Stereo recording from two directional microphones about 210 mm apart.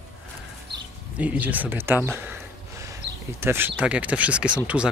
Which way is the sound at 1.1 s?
5° right (ahead or behind).